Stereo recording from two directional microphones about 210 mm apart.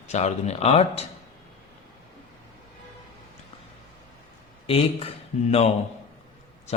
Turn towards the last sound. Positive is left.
turn(degrees=30)  # may be behind; listen again after turning